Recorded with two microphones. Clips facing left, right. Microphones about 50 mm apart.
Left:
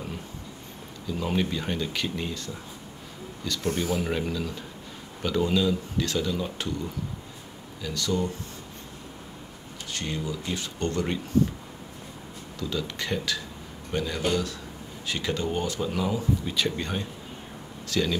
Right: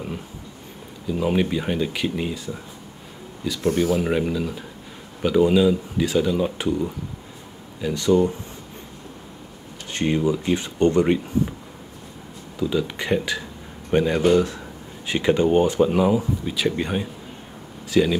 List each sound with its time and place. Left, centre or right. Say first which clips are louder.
1.0 s speech: right 6 dB; centre
9.9 s speech: right 11 dB; right
12.5 s speech: right 8 dB; centre